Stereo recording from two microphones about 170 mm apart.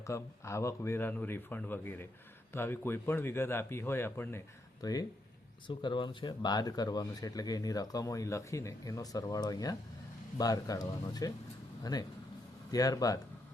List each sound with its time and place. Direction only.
0.0 s speech: 15° left (ahead or behind)